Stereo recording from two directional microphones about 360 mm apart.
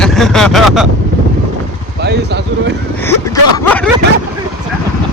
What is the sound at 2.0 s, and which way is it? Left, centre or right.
Speech, right.